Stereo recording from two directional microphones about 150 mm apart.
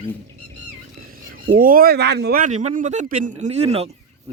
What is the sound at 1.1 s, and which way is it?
Speech, 75° right (ahead or behind).